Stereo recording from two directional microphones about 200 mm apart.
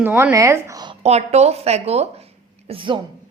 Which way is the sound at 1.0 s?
35° right (ahead or behind).